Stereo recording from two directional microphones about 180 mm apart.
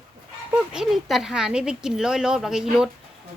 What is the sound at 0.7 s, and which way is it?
Speech, centre (ahead or behind).